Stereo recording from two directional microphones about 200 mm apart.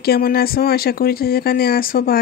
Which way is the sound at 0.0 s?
50° left (ahead or behind).